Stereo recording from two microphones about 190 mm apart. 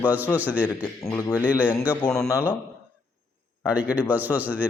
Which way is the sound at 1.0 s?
15° left (ahead or behind).